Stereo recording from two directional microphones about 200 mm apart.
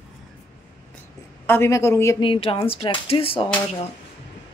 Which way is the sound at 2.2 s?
25° left (ahead or behind).